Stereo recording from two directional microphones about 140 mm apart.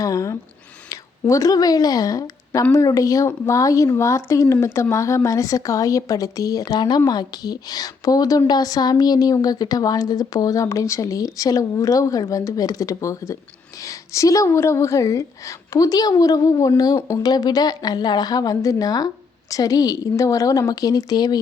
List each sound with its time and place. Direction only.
0.0 s a woman's voice: 25° left (ahead or behind)